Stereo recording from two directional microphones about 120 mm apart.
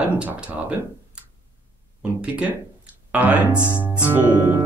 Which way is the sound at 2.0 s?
10° right (ahead or behind).